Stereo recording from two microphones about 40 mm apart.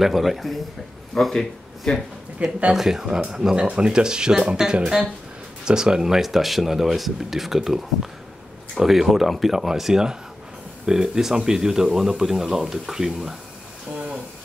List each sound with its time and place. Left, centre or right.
0.0 s speech: centre
2.3 s speech: right
2.7 s speech: centre
3.5 s speech: right; by 13.4 s centre